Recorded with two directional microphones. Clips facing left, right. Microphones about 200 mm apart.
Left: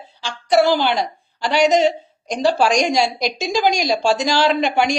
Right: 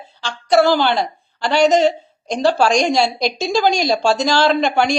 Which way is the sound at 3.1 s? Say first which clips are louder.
Right 2 dB; 30° right (ahead or behind).